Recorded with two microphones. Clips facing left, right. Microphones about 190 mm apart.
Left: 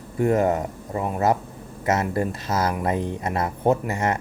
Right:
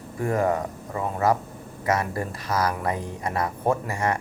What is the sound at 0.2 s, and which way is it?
Speech, 25° left (ahead or behind).